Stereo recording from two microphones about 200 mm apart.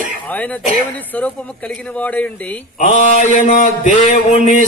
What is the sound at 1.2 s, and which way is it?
A man's voice, 5° left (ahead or behind).